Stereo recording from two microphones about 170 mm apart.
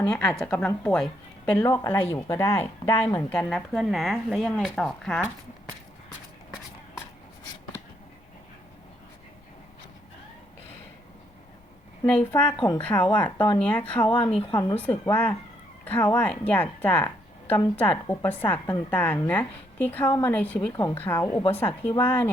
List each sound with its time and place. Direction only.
0.0 s speech: 5° left (ahead or behind)
12.0 s speech: 10° left (ahead or behind)
12.5 s speech: 25° left (ahead or behind)
12.8 s speech: 10° left (ahead or behind)
14.0 s speech: 30° left (ahead or behind)
14.8 s speech: 10° left (ahead or behind)
15.8 s cat: 10° left (ahead or behind)
16.1 s speech: 10° left (ahead or behind)
18.1 s speech: 10° left (ahead or behind)
20.7 s speech: 20° left (ahead or behind)